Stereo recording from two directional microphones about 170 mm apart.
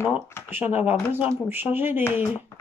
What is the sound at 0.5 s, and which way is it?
Speech, 10° right (ahead or behind).